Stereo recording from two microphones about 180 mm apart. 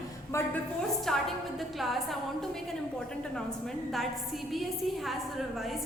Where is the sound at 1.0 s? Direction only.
Centre (ahead or behind).